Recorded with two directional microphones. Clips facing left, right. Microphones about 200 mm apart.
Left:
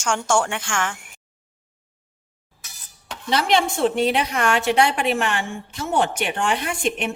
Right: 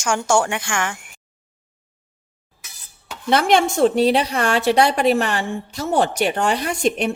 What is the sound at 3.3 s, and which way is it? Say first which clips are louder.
A woman's voice: right 4 dB; 50° right (ahead or behind).